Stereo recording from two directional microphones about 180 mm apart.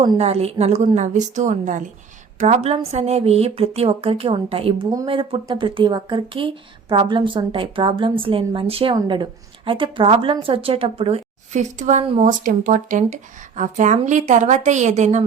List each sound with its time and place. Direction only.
0.0 s speech: 30° right (ahead or behind)
12.2 s speech: 50° right (ahead or behind)